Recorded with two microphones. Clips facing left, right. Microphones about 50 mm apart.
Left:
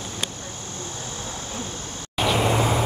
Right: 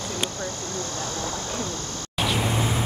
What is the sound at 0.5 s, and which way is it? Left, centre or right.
Vehicle, centre.